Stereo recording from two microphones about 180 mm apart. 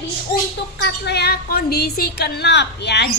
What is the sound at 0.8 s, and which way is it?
A woman's voice, 65° left (ahead or behind).